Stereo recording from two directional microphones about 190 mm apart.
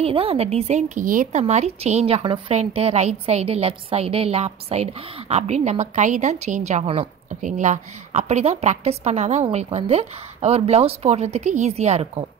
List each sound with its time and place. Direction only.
0.0 s a woman's voice: 30° right (ahead or behind)
1.4 s a woman's voice: 35° right (ahead or behind)